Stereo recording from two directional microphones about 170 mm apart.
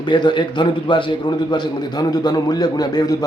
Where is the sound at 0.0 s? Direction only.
25° left (ahead or behind).